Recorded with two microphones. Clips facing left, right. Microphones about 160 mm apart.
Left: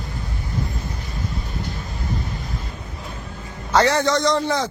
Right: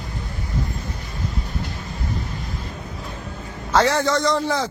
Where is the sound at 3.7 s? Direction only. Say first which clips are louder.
Left 1 dB; centre (ahead or behind).